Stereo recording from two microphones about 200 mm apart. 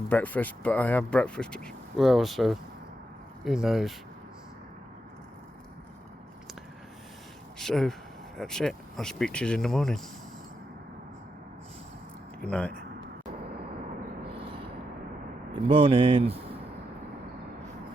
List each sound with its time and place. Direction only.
0.1 s speech: 10° left (ahead or behind)
7.6 s speech: centre (ahead or behind)
12.4 s speech: 5° left (ahead or behind)
14.3 s a sound: 25° right (ahead or behind)
15.5 s speech: 25° right (ahead or behind)